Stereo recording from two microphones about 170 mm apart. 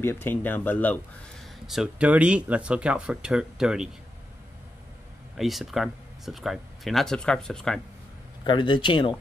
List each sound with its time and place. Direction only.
0.0 s speech: 15° left (ahead or behind)
1.7 s speech: 5° right (ahead or behind)
5.4 s speech: centre (ahead or behind)
8.5 s speech: 30° left (ahead or behind)